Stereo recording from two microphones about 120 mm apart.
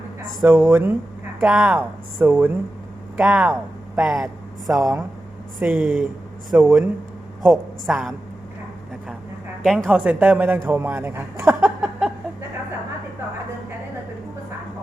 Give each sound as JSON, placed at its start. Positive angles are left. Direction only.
{"t": 0.7, "sound": "speech", "side_deg": -15}
{"t": 5.5, "sound": "a woman's voice", "side_deg": -15}
{"t": 9.6, "sound": "a woman's voice", "side_deg": 0}
{"t": 11.8, "sound": "a sound", "side_deg": -5}